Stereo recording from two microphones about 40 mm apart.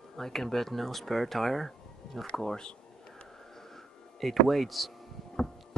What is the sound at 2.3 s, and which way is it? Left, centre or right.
Speech, centre.